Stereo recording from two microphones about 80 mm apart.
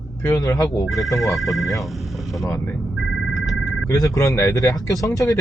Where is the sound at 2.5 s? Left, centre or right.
Left.